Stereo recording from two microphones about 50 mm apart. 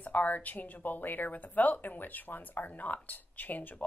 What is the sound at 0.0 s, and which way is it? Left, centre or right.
Speech, left.